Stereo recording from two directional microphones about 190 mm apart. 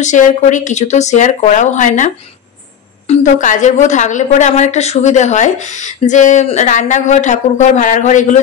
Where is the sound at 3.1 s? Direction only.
40° left (ahead or behind).